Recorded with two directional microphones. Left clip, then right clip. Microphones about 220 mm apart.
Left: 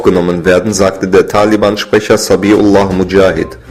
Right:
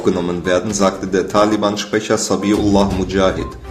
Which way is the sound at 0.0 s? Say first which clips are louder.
Left 9 dB; 35° left (ahead or behind).